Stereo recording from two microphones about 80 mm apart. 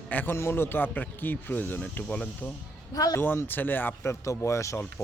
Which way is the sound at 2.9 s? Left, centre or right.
Left.